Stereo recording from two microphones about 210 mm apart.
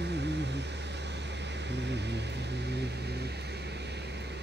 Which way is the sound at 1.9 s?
55° right (ahead or behind).